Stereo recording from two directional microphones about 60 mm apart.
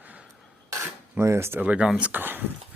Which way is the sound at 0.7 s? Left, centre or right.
Right.